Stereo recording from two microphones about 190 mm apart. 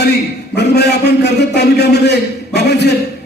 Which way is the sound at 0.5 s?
65° left (ahead or behind).